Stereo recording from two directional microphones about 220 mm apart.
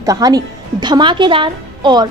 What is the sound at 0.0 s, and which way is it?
A woman's voice, 15° right (ahead or behind).